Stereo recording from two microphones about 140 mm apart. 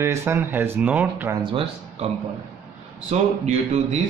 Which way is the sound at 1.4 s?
40° right (ahead or behind).